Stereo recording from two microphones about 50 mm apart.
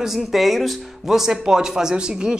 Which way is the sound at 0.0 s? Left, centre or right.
Centre.